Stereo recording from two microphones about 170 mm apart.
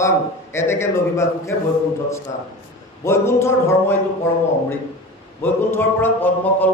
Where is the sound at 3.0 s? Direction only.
15° left (ahead or behind).